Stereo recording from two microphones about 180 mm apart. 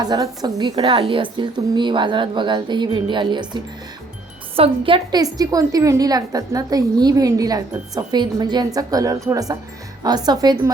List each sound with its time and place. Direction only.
0.0 s a woman's voice: 20° right (ahead or behind)